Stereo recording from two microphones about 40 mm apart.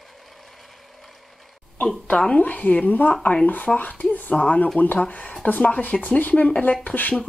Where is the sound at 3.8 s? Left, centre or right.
Left.